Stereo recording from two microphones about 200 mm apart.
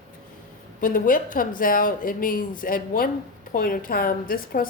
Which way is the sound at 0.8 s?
45° left (ahead or behind).